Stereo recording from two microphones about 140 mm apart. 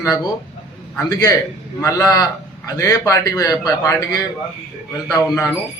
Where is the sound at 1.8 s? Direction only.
25° left (ahead or behind).